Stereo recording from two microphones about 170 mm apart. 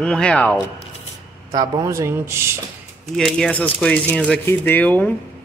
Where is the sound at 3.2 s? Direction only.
5° left (ahead or behind).